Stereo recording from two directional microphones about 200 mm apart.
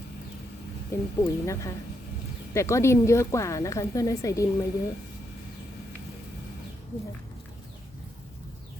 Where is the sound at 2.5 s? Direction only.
15° left (ahead or behind).